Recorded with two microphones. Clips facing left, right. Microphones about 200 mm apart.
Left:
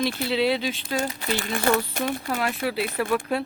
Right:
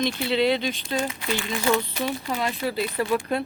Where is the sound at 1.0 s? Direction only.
40° left (ahead or behind).